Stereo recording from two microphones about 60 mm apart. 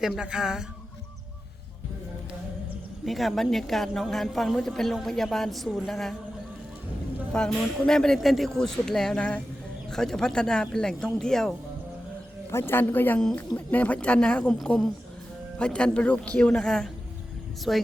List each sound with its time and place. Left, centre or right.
0.0 s speech: centre
3.1 s a woman's voice: centre
7.3 s speech: centre
12.5 s speech: left; by 14.5 s centre
15.5 s speech: centre